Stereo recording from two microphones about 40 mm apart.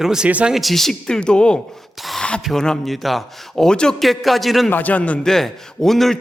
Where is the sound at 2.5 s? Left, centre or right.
Centre.